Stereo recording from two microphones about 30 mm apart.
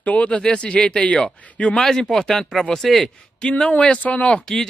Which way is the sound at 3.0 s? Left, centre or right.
Left.